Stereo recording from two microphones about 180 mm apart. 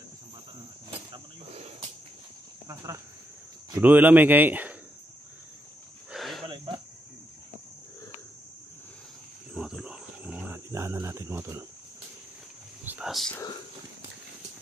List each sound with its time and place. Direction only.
0.9 s cricket: 35° right (ahead or behind)
2.7 s speech: 20° right (ahead or behind)
6.1 s a sound: centre (ahead or behind)
6.4 s cricket: 25° right (ahead or behind)
9.5 s cricket: 5° right (ahead or behind)
12.8 s a sound: 5° right (ahead or behind)